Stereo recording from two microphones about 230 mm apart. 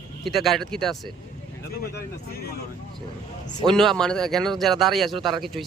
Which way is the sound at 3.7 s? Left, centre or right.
Centre.